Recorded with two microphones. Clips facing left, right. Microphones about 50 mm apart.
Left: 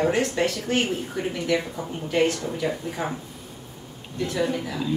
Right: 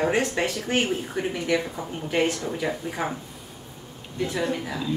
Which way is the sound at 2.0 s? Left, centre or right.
Centre.